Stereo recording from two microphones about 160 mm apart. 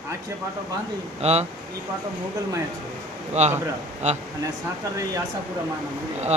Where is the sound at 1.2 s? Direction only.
40° right (ahead or behind).